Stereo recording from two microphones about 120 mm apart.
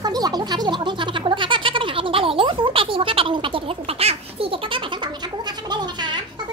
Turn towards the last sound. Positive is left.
turn(degrees=-40)  # may be behind; listen again after turning